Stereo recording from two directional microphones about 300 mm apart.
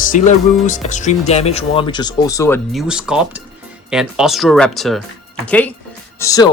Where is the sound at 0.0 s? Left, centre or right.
Left; by 2.8 s centre.